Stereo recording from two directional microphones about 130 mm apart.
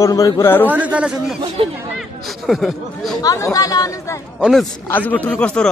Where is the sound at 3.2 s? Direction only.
25° left (ahead or behind).